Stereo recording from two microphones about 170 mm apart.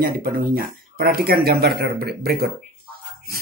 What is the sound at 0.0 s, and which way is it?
Speech, 60° right (ahead or behind).